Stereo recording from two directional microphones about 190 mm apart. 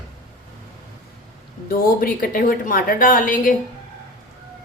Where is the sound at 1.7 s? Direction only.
50° left (ahead or behind).